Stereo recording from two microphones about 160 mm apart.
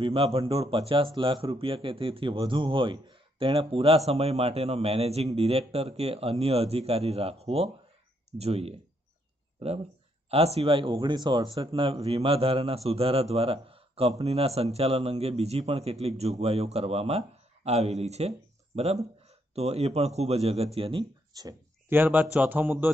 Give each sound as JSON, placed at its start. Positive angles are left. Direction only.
{"t": 0.0, "sound": "speech", "side_deg": -35}
{"t": 10.3, "sound": "speech", "side_deg": -40}
{"t": 19.5, "sound": "speech", "side_deg": -40}
{"t": 21.4, "sound": "speech", "side_deg": -20}